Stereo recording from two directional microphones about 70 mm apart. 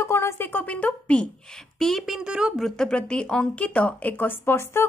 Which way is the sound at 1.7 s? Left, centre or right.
Centre.